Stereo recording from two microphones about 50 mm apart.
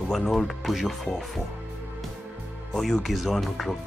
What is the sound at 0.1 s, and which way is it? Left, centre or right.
Speech, centre.